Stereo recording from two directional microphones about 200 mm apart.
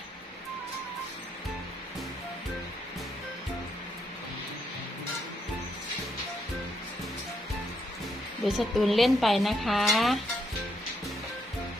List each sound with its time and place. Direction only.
8.4 s a woman's voice: centre (ahead or behind)